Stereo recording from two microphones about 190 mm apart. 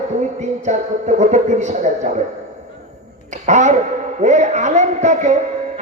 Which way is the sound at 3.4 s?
40° right (ahead or behind).